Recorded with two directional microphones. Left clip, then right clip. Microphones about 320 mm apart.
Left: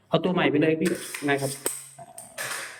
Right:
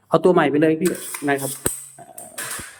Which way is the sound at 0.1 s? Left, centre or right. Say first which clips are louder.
Right 7 dB; centre.